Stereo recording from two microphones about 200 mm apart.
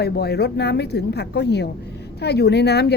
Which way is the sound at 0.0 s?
55° left (ahead or behind).